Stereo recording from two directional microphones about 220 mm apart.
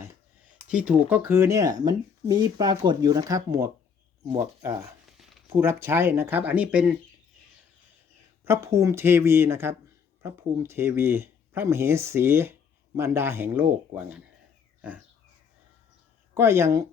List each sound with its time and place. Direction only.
0.7 s speech: 5° right (ahead or behind)
5.1 s a sound: centre (ahead or behind)
5.5 s speech: 10° right (ahead or behind)
8.4 s speech: 15° right (ahead or behind)
16.3 s speech: 10° right (ahead or behind)